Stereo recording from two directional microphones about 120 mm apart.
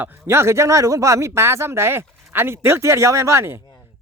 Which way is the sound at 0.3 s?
20° right (ahead or behind).